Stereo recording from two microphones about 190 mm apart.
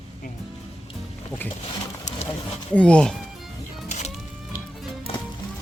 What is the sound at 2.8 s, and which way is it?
Speech, 5° left (ahead or behind).